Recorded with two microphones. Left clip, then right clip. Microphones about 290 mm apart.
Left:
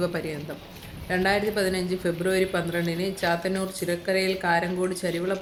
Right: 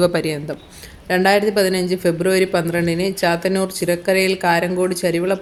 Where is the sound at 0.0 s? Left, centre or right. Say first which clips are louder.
Right 11 dB; left.